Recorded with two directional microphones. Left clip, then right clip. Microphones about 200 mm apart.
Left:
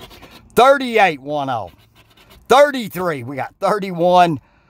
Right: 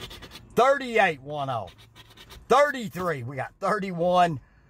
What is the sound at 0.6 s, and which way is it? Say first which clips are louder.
Speech: left 9 dB; 45° left (ahead or behind).